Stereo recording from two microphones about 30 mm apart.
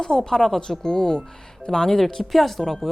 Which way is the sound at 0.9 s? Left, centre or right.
Left.